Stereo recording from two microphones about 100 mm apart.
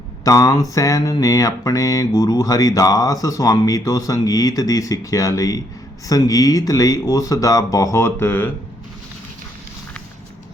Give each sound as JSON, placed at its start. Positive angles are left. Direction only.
{"t": 0.3, "sound": "mantra", "side_deg": 35}